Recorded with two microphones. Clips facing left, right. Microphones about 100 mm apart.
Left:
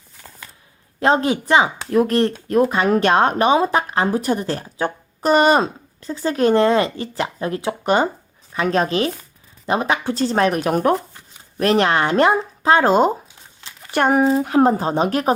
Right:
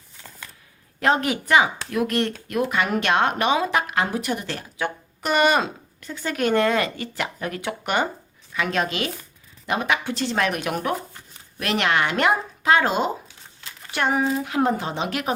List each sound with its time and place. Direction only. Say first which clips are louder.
0.9 s speech: left 4 dB; 30° left (ahead or behind); by 14.3 s 45° left (ahead or behind)
14.3 s speech: left 7 dB; 35° left (ahead or behind)